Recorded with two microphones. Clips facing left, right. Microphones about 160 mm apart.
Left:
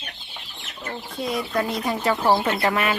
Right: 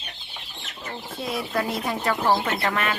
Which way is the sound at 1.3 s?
Centre (ahead or behind).